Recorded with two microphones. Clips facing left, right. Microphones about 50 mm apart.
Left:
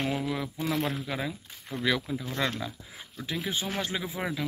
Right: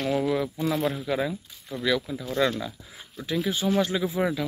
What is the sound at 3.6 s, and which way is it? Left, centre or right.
Speech, left.